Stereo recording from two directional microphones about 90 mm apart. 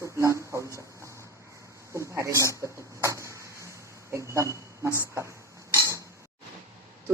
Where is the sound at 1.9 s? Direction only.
30° right (ahead or behind).